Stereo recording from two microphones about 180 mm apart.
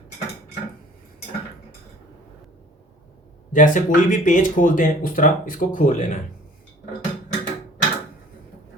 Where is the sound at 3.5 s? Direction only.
45° left (ahead or behind).